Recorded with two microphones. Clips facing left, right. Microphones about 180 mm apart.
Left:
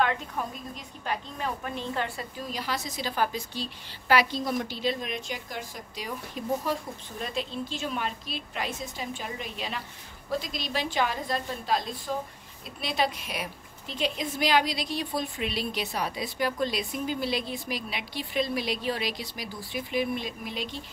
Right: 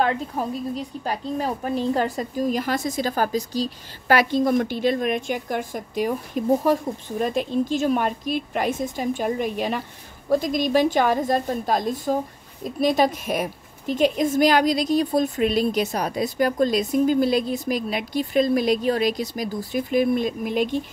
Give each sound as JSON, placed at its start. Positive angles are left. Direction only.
{"t": 0.0, "sound": "speech", "side_deg": -35}